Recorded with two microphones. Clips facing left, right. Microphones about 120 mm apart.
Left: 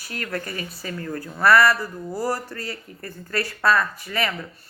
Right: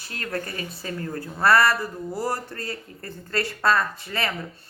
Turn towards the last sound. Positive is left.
turn(degrees=-25)  # may be behind; listen again after turning